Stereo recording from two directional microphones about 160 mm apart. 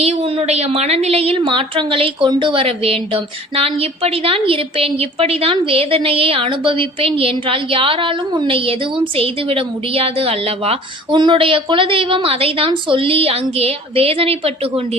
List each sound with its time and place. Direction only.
0.0 s a woman's voice: 35° right (ahead or behind)